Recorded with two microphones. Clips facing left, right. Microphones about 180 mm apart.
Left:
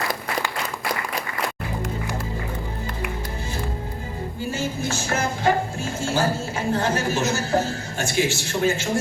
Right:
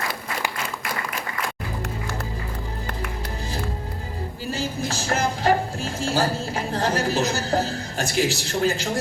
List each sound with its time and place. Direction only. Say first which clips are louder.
4.5 s music: even; 35° right (ahead or behind)
6.7 s a woman's voice: right 2 dB; 35° right (ahead or behind)